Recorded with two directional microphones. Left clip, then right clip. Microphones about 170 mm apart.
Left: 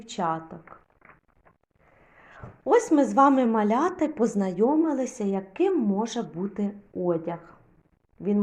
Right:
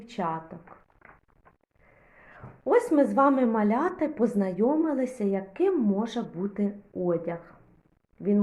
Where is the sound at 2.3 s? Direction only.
30° left (ahead or behind).